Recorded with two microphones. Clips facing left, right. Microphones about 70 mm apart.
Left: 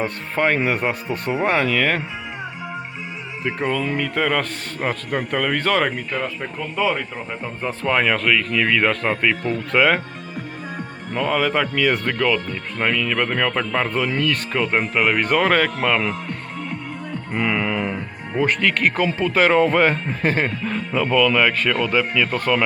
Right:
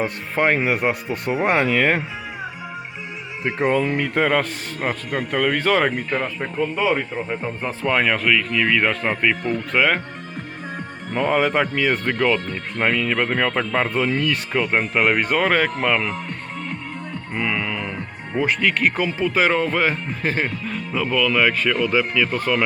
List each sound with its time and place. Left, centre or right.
0.0 s speech: centre
3.7 s speech: right
4.8 s speech: centre
7.6 s speech: centre
11.2 s speech: centre
17.3 s music: centre
18.3 s speech: centre